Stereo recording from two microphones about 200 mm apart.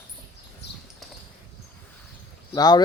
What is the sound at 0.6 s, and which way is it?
Horse, 60° left (ahead or behind).